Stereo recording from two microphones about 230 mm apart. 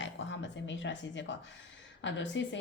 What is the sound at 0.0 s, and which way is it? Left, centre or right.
Speech, left.